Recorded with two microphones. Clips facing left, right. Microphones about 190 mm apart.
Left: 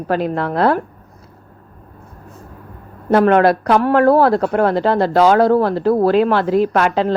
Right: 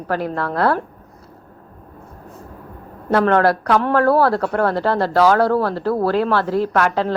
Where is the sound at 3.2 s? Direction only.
20° left (ahead or behind).